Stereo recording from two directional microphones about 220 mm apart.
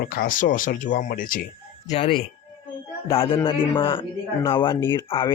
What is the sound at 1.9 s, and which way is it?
Speech, 25° left (ahead or behind).